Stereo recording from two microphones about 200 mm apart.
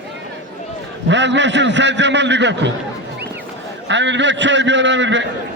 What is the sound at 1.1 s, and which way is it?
A man's voice, 65° right (ahead or behind).